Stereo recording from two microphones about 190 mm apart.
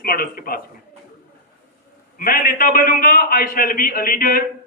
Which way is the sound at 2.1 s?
50° left (ahead or behind).